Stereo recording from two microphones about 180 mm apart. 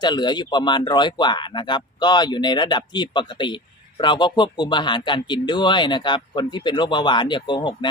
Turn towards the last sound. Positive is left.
turn(degrees=25)  # may be behind; listen again after turning